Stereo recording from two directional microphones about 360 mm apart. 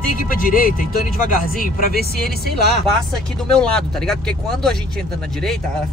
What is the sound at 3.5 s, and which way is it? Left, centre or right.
Speech, centre.